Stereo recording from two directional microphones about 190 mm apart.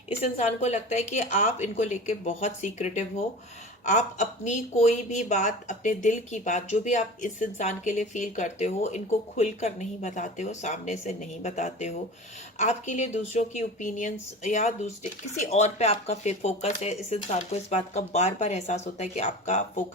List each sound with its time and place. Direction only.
0.2 s speech: 35° left (ahead or behind)